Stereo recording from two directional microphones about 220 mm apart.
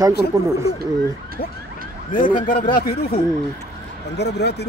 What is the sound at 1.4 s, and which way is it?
Speech, 45° left (ahead or behind).